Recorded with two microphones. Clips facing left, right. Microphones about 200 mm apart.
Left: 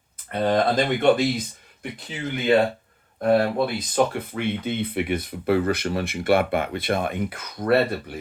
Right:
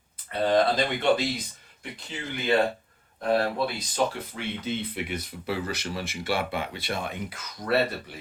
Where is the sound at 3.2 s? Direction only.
55° left (ahead or behind).